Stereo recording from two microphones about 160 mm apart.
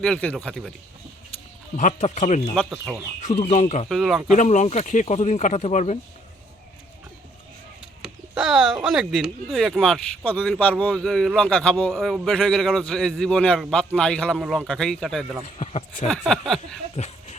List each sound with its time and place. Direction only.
0.0 s speech: 5° left (ahead or behind)
1.7 s speech: 50° left (ahead or behind)
3.8 s speech: centre (ahead or behind)
4.4 s speech: 45° left (ahead or behind)
8.0 s speech: 5° right (ahead or behind)
15.4 s speech: 40° left (ahead or behind)
16.0 s speech: 5° left (ahead or behind)
17.0 s speech: 45° left (ahead or behind)